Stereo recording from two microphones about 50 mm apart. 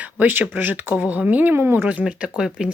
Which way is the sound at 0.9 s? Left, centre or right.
Right.